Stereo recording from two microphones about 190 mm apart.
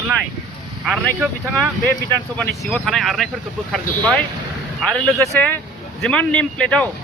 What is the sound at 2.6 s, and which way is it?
Speech, centre (ahead or behind).